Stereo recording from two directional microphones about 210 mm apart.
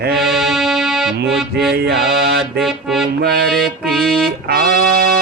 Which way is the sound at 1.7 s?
50° right (ahead or behind).